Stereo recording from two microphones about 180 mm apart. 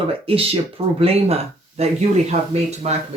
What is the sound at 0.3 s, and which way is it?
Speech, 30° right (ahead or behind).